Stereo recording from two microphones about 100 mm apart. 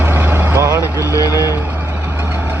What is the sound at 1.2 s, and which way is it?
Vehicle, 35° left (ahead or behind).